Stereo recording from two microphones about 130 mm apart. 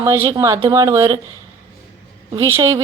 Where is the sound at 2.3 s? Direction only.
20° right (ahead or behind).